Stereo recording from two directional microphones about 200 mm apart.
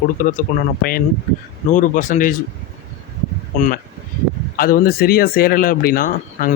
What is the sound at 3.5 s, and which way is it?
Speech, 40° left (ahead or behind).